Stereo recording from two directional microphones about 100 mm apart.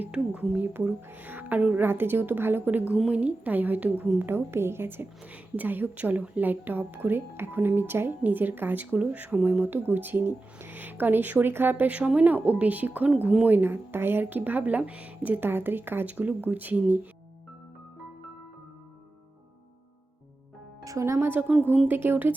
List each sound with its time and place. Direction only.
0.0 s a woman's voice: 15° right (ahead or behind)
20.8 s a woman's voice: 30° right (ahead or behind)